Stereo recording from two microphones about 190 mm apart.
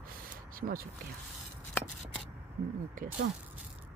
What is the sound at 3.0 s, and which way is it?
Speech, 45° right (ahead or behind).